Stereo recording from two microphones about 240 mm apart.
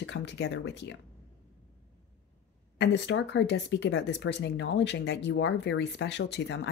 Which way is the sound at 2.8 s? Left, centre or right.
Left.